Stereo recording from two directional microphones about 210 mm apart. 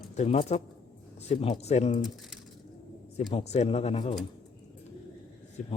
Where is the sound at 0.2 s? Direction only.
30° left (ahead or behind).